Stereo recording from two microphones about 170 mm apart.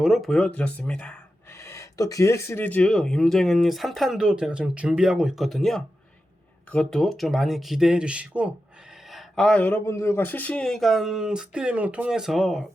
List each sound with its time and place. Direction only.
0.0 s speech: centre (ahead or behind)